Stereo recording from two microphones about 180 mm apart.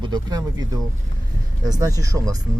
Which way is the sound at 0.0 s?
25° right (ahead or behind).